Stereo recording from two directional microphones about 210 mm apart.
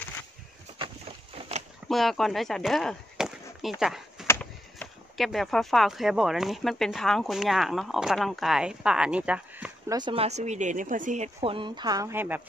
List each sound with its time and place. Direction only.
1.9 s speech: centre (ahead or behind)
9.9 s speech: 25° right (ahead or behind)